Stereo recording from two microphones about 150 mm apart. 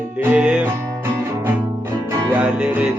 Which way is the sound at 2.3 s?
5° right (ahead or behind).